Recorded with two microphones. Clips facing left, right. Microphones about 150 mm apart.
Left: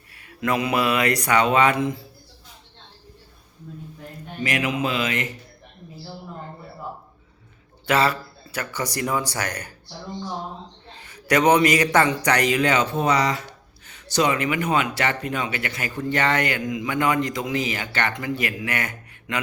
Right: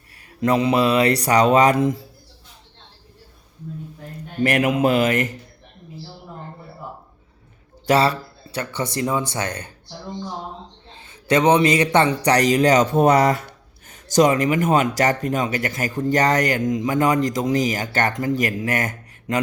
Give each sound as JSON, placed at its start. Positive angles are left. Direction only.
{"t": 0.3, "sound": "a man's voice", "side_deg": -35}
{"t": 4.4, "sound": "speech", "side_deg": -55}
{"t": 7.9, "sound": "speech", "side_deg": -30}
{"t": 10.9, "sound": "a man's voice", "side_deg": -25}